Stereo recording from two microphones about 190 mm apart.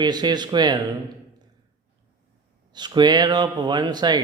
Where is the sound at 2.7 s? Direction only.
20° right (ahead or behind).